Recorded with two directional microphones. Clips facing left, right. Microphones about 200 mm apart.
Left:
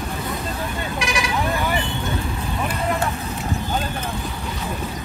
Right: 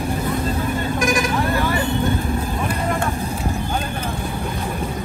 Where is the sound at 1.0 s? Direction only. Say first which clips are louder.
Right 4 dB; 50° right (ahead or behind).